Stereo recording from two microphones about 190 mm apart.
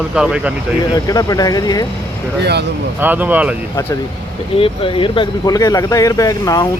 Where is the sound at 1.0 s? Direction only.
20° left (ahead or behind).